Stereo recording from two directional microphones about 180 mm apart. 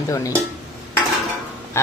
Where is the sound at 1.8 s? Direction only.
15° left (ahead or behind).